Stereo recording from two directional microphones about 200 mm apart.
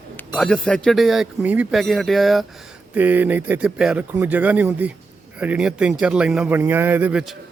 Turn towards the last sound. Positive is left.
turn(degrees=-5)  # may be behind; listen again after turning